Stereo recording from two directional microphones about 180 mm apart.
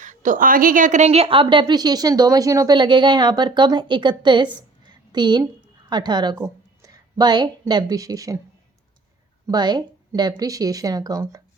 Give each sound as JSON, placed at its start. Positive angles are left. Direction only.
{"t": 0.0, "sound": "a woman's voice", "side_deg": -45}
{"t": 9.5, "sound": "a woman's voice", "side_deg": -25}